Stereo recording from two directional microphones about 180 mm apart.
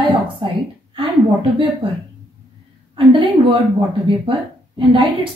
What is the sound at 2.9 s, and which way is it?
A woman's voice, 30° right (ahead or behind).